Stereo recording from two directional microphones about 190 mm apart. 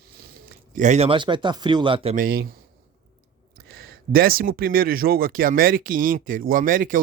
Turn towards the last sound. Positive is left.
turn(degrees=-45)  # may be behind; listen again after turning